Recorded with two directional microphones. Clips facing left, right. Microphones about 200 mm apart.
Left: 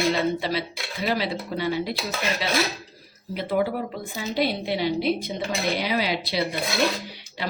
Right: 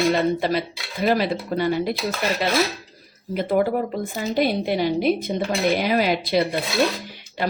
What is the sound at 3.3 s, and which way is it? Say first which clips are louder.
Speech: right 4 dB; 50° right (ahead or behind).